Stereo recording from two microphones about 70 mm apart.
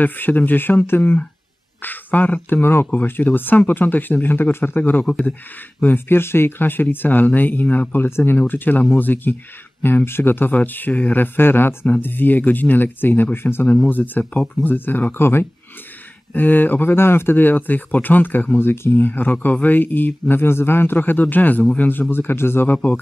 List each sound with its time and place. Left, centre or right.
0.0 s speech: left
11.3 s speech: left